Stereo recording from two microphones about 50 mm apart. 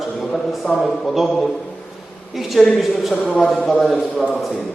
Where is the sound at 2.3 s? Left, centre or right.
Centre.